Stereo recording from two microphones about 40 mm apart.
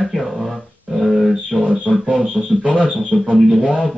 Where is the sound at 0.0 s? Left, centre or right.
Centre.